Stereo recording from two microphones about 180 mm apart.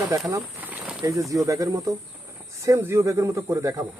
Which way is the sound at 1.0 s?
20° right (ahead or behind).